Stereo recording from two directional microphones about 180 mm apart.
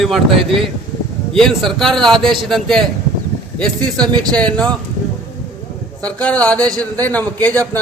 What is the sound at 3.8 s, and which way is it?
Speech, 25° right (ahead or behind).